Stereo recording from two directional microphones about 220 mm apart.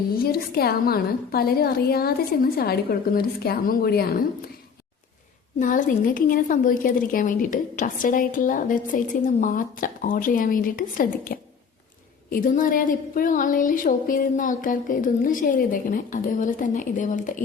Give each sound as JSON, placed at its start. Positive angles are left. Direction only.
{"t": 0.2, "sound": "a woman's voice", "side_deg": 45}
{"t": 5.5, "sound": "a woman's voice", "side_deg": 35}